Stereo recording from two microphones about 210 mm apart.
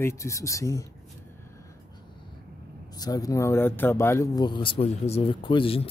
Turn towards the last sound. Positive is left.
turn(degrees=25)  # may be behind; listen again after turning